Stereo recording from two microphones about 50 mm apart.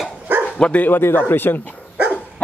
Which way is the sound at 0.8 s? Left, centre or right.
Left.